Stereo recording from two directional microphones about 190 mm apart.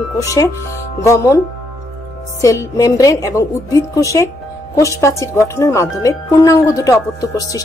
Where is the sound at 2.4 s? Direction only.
15° left (ahead or behind).